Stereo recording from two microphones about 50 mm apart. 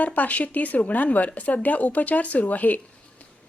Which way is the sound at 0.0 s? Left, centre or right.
Left.